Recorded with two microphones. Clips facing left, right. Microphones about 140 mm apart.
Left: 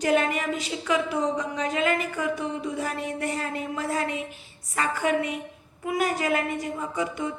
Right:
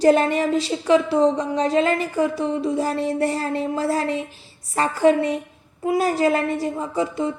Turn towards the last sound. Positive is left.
turn(degrees=-30)  # may be behind; listen again after turning